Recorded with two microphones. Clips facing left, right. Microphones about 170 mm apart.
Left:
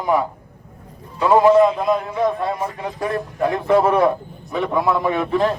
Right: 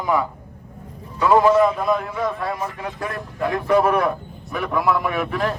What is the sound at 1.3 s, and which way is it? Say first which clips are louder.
Speech: left 2 dB; 20° left (ahead or behind).